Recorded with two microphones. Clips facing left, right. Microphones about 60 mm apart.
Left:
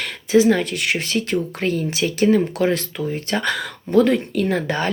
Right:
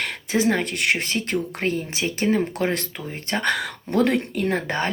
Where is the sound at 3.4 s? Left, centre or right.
Right.